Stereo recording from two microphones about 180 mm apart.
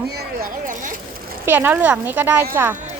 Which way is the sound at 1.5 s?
10° right (ahead or behind).